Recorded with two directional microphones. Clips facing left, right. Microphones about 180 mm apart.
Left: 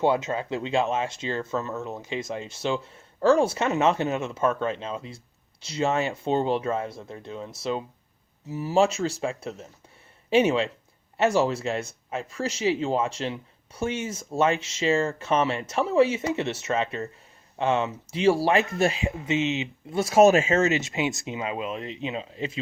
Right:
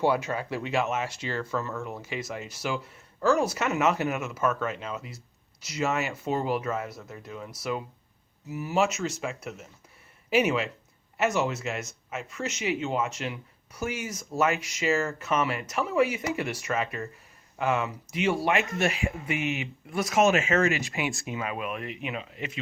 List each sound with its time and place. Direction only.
0.0 s speech: 25° left (ahead or behind)